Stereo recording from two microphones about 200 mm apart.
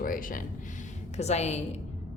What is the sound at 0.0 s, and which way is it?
Speech, 45° left (ahead or behind).